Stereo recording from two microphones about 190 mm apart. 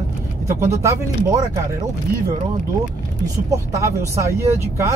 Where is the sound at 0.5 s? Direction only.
15° right (ahead or behind).